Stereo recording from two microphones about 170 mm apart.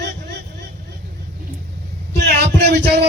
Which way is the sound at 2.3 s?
75° right (ahead or behind).